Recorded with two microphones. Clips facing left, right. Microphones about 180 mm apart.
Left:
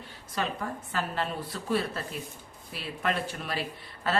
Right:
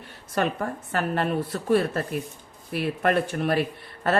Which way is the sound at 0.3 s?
60° right (ahead or behind).